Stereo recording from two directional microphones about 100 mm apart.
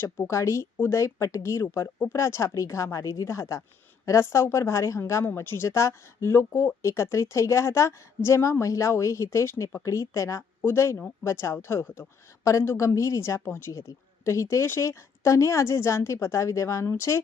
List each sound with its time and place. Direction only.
0.0 s a woman's voice: 25° left (ahead or behind)